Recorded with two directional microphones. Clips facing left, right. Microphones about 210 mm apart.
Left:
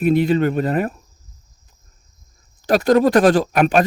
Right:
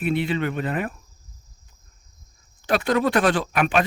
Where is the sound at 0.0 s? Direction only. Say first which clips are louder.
Left 8 dB; 40° left (ahead or behind).